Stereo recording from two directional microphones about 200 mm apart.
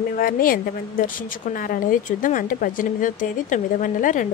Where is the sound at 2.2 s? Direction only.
40° left (ahead or behind).